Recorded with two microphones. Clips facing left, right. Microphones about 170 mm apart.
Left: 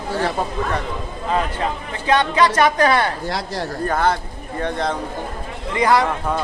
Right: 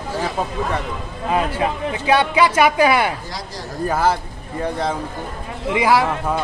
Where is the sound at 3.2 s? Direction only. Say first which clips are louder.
Left 6 dB; 65° left (ahead or behind).